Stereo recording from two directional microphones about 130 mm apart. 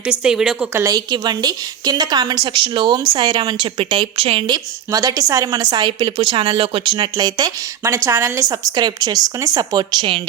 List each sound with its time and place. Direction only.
0.1 s a woman's voice: 5° right (ahead or behind)
0.7 s a woman's voice: 25° right (ahead or behind)
7.9 s a woman's voice: 20° right (ahead or behind)